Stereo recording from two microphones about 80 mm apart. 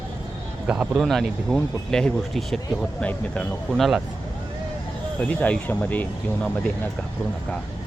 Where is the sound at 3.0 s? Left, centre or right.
Centre.